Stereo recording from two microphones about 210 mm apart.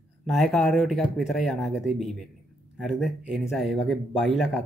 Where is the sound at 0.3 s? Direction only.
Centre (ahead or behind).